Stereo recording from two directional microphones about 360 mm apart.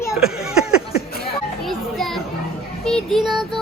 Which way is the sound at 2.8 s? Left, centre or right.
Centre.